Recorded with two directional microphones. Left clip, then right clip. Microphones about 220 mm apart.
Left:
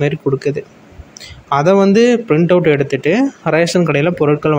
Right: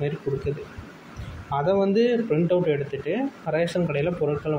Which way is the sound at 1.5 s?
45° left (ahead or behind).